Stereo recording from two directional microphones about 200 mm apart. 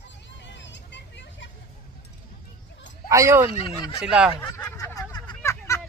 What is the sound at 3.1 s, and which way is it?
Speech, 15° right (ahead or behind).